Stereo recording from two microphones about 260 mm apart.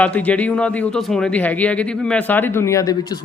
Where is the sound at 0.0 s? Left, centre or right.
Centre.